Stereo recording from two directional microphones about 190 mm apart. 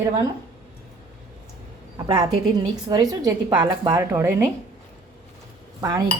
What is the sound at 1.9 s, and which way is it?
A woman's voice, 20° right (ahead or behind).